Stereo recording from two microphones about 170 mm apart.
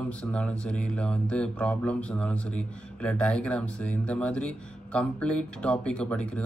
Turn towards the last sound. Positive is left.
turn(degrees=5)  # may be behind; listen again after turning